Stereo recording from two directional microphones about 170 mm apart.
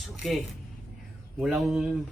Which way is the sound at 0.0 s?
Centre (ahead or behind).